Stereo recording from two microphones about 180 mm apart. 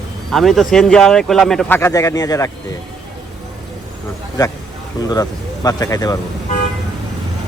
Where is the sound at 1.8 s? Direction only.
20° left (ahead or behind).